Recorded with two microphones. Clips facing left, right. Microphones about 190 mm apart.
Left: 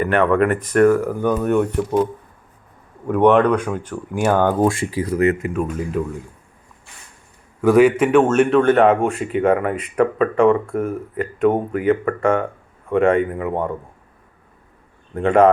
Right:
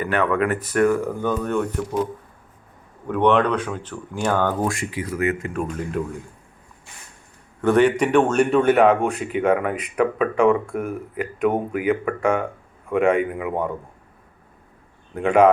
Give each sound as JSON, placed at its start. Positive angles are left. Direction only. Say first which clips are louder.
{"t": 0.0, "sound": "speech", "louder": "left 5 dB", "side_deg": -5}
{"t": 1.0, "sound": "speech", "louder": "left 4 dB", "side_deg": 10}
{"t": 3.1, "sound": "speech", "louder": "left 4 dB", "side_deg": 10}
{"t": 4.7, "sound": "speech", "louder": "left 5 dB", "side_deg": 35}
{"t": 5.5, "sound": "speech", "louder": "left 3 dB", "side_deg": 5}
{"t": 7.6, "sound": "speech", "louder": "left 4 dB", "side_deg": 10}
{"t": 15.1, "sound": "speech", "louder": "left 2 dB", "side_deg": -5}